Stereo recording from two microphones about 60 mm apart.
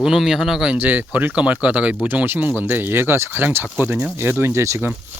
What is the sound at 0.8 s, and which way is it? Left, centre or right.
Speech, right.